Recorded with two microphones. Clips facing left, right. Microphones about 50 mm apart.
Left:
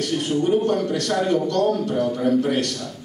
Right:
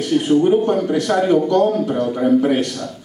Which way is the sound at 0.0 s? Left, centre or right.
Centre.